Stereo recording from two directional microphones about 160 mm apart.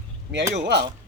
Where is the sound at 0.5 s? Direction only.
90° right.